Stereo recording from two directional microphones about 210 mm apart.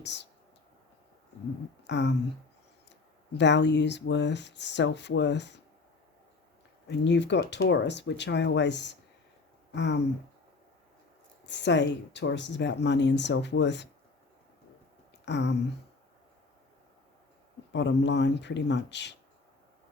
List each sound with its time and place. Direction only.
0.0 s speech: 55° left (ahead or behind)
1.9 s speech: 55° left (ahead or behind)
3.3 s speech: 55° left (ahead or behind)
6.8 s speech: 55° left (ahead or behind)
11.4 s speech: 55° left (ahead or behind)
15.2 s a sound: 55° left (ahead or behind)
17.7 s speech: 55° left (ahead or behind)